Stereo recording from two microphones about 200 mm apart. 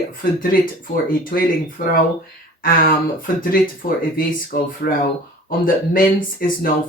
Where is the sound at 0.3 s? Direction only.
45° left (ahead or behind).